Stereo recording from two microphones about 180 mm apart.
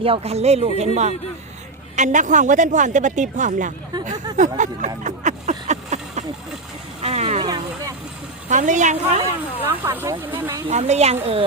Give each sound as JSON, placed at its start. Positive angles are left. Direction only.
{"t": 0.0, "sound": "a woman's voice", "side_deg": -35}
{"t": 5.0, "sound": "a sound", "side_deg": -40}
{"t": 7.0, "sound": "speech", "side_deg": -35}
{"t": 7.4, "sound": "vehicle", "side_deg": -20}
{"t": 8.4, "sound": "a woman's voice", "side_deg": -45}
{"t": 9.6, "sound": "speech", "side_deg": -10}
{"t": 10.7, "sound": "speech", "side_deg": -40}